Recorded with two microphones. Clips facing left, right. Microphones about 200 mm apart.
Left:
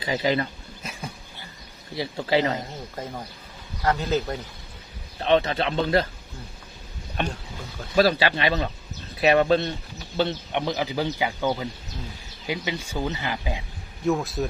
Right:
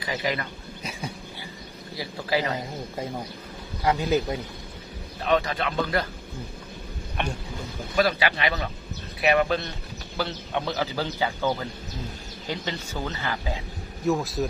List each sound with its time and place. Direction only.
0.0 s speech: 25° left (ahead or behind)
2.0 s speech: 25° left (ahead or behind)
3.8 s a man's voice: 10° right (ahead or behind)
5.2 s speech: 30° left (ahead or behind)
7.9 s a man's voice: 30° left (ahead or behind); by 13.6 s 15° left (ahead or behind)
14.0 s a man's voice: centre (ahead or behind)